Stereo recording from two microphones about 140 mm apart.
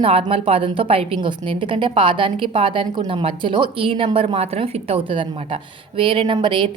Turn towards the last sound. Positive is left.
turn(degrees=-35)  # may be behind; listen again after turning